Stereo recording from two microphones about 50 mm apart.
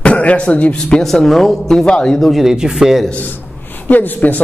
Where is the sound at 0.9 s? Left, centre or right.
Centre.